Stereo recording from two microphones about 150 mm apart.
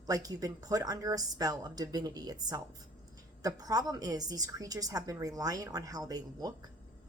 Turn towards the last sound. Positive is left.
turn(degrees=-25)  # may be behind; listen again after turning